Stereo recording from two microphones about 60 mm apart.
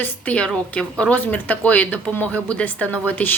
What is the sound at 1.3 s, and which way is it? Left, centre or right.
A woman's voice, left.